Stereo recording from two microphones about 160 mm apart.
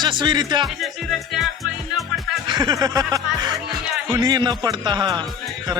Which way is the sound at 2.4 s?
25° right (ahead or behind).